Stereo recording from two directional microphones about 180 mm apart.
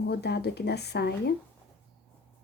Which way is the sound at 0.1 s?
65° left (ahead or behind).